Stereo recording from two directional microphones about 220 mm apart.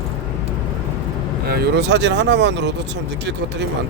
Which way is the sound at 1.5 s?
50° right (ahead or behind).